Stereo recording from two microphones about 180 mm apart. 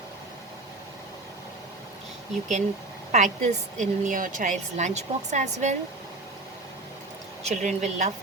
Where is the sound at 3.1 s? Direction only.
40° right (ahead or behind).